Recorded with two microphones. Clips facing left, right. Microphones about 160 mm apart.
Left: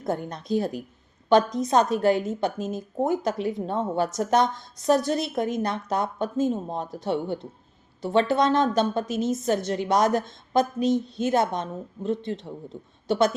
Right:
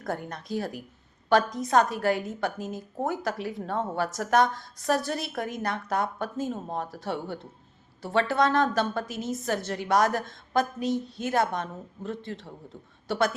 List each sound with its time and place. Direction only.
0.0 s a woman's voice: 20° left (ahead or behind)